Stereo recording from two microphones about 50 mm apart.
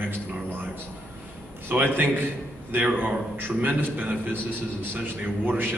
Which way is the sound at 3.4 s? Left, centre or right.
Right.